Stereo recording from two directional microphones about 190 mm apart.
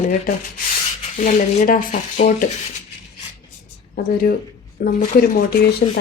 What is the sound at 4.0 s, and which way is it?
Speech, 50° left (ahead or behind).